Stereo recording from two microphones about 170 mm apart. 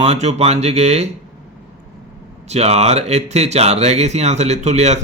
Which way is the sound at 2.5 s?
40° right (ahead or behind).